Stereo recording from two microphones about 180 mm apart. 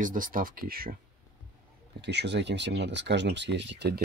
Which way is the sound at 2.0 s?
70° right (ahead or behind).